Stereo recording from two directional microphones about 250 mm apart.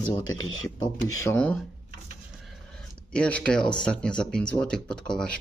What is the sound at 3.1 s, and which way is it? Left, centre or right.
Speech, centre.